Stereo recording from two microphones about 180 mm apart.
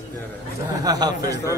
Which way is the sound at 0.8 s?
20° right (ahead or behind).